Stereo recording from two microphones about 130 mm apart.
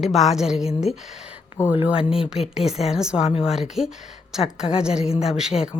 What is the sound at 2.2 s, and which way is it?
Speech, 5° right (ahead or behind).